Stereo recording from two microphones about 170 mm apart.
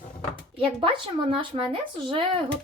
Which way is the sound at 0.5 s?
30° right (ahead or behind).